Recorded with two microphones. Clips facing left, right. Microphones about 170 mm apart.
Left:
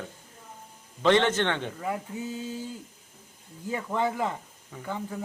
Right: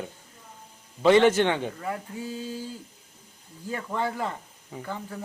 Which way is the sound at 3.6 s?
15° left (ahead or behind).